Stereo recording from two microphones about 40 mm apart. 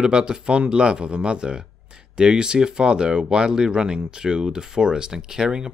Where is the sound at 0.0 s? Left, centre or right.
Right.